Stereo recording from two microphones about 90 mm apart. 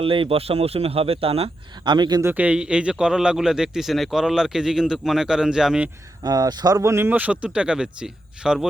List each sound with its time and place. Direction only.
0.0 s speech: 85° right
1.7 s speech: 55° right (ahead or behind)
2.3 s speech: 15° right (ahead or behind)
6.2 s speech: 50° right (ahead or behind); by 7.1 s 30° right (ahead or behind)
7.1 s speech: 15° right (ahead or behind)